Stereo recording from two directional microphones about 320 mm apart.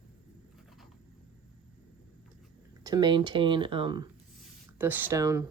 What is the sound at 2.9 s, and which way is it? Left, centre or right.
Speech, centre.